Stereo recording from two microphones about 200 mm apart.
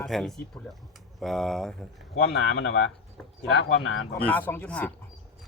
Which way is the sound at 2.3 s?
65° left (ahead or behind).